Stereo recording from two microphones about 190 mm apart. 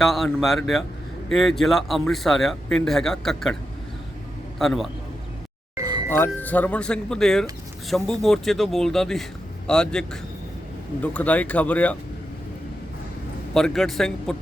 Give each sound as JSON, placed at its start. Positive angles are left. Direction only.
{"t": 0.0, "sound": "a man's voice", "side_deg": 0}
{"t": 5.7, "sound": "music", "side_deg": -20}
{"t": 6.1, "sound": "a man's voice", "side_deg": 10}
{"t": 13.5, "sound": "a man's voice", "side_deg": 5}